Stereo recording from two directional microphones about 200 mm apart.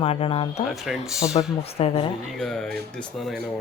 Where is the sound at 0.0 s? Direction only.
30° left (ahead or behind).